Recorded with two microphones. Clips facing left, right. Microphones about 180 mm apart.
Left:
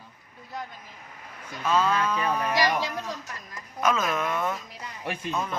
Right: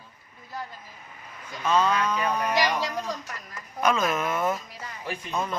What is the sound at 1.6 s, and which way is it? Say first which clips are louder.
Speech: right 1 dB; 5° left (ahead or behind).